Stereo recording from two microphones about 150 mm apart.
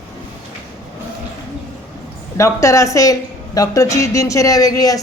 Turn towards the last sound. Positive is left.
turn(degrees=25)  # may be behind; listen again after turning